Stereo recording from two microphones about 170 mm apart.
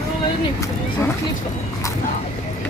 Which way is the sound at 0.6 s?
15° left (ahead or behind).